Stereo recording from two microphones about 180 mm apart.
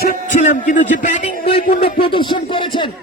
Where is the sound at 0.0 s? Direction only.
50° left (ahead or behind).